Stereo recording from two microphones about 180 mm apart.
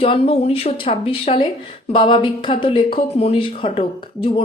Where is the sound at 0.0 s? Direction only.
30° left (ahead or behind).